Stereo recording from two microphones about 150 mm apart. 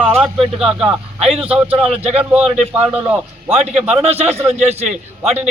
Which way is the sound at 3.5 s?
45° right (ahead or behind).